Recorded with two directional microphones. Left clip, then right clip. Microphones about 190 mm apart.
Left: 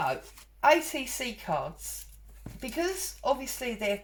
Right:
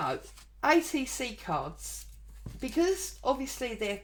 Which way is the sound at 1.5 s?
35° right (ahead or behind).